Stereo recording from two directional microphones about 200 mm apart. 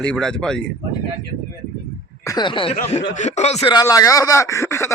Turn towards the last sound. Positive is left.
turn(degrees=15)  # may be behind; listen again after turning